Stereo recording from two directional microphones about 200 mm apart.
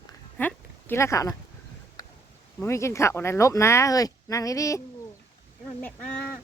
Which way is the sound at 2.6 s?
15° left (ahead or behind).